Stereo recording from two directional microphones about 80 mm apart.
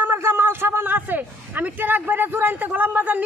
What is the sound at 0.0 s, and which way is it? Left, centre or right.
A man's voice, right.